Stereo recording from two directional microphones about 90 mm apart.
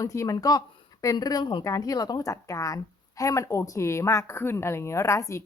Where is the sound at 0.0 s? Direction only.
35° left (ahead or behind); by 1.6 s 55° left (ahead or behind).